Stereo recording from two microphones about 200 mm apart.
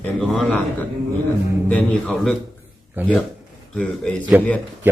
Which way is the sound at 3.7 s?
5° left (ahead or behind).